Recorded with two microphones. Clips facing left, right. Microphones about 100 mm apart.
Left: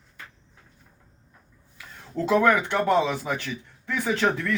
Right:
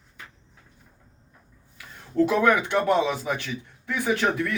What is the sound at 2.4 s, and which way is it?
Speech, 15° right (ahead or behind).